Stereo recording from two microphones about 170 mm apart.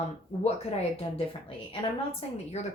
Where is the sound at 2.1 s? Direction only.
35° left (ahead or behind).